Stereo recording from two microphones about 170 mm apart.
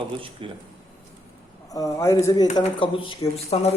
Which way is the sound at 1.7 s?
20° left (ahead or behind).